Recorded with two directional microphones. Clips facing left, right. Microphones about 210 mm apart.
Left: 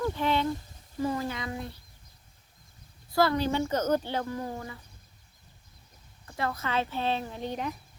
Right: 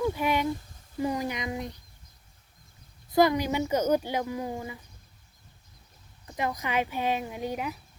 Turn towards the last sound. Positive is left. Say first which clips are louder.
# right 1 dB
turn(degrees=-10)  # may be behind; listen again after turning